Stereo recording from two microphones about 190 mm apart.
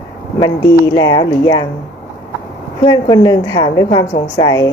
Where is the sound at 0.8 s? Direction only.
20° left (ahead or behind).